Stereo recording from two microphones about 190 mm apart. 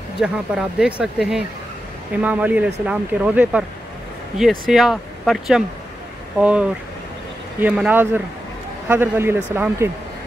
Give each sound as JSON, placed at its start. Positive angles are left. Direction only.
{"t": 0.2, "sound": "speech", "side_deg": 0}